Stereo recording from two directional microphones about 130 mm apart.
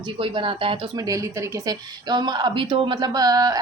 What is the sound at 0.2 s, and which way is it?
Speech, 40° right (ahead or behind).